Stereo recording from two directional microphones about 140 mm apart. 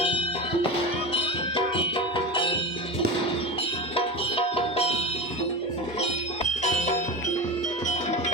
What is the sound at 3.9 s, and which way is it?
Music, 45° left (ahead or behind).